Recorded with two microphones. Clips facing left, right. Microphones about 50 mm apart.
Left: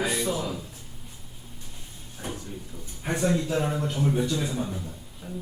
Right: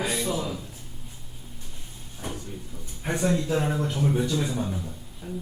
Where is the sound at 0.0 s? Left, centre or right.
Left.